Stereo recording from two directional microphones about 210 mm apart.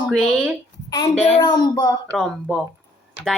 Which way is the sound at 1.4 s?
20° left (ahead or behind).